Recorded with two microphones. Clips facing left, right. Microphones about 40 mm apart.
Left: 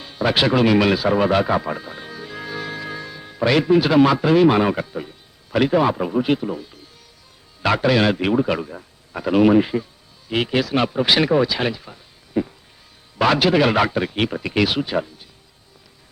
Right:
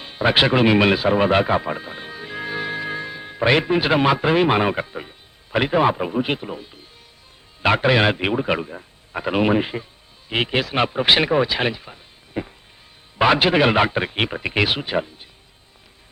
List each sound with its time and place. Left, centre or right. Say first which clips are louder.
0.0 s a man's voice: right 1 dB; right